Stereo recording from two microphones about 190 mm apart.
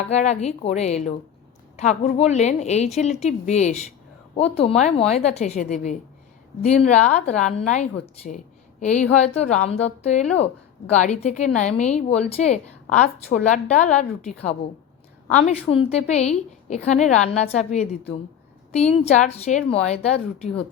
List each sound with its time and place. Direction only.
0.0 s a woman's voice: 40° left (ahead or behind)